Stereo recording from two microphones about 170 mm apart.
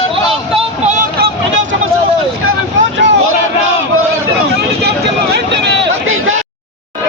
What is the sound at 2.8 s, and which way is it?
Vehicle, 90° right.